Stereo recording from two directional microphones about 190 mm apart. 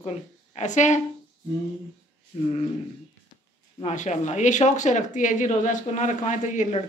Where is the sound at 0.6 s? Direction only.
40° left (ahead or behind).